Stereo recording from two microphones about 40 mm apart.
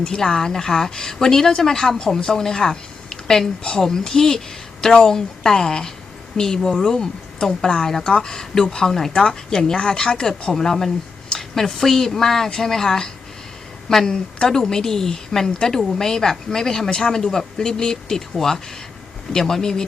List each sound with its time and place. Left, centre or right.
0.0 s speech: centre
9.1 s speech: left